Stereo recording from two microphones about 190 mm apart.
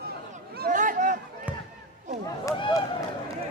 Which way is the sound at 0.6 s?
45° right (ahead or behind).